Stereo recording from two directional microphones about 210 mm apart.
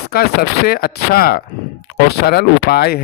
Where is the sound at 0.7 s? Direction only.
45° left (ahead or behind).